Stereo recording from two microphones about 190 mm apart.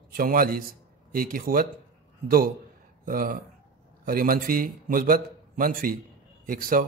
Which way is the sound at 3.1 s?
50° right (ahead or behind).